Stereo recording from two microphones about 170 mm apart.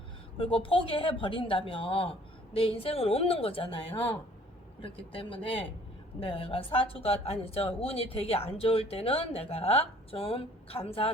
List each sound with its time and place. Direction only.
0.3 s a woman's voice: 30° left (ahead or behind)